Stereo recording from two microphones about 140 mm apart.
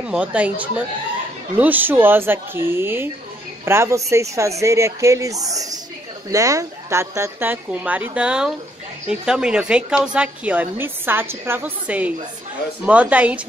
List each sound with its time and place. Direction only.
0.0 s a woman's voice: 10° right (ahead or behind)